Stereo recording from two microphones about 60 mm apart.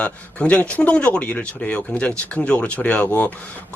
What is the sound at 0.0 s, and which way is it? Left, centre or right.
Speech, left.